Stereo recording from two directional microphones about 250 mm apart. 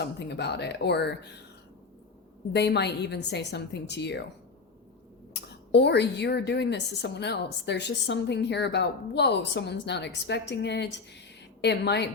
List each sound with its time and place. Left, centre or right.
0.0 s a woman's voice: left
2.5 s a woman's voice: left
5.3 s a woman's voice: left